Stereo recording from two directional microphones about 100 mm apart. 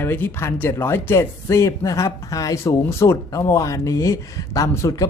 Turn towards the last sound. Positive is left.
turn(degrees=30)  # may be behind; listen again after turning